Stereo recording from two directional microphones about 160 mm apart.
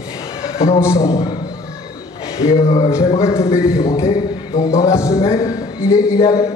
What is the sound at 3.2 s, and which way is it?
A man's voice, 20° left (ahead or behind).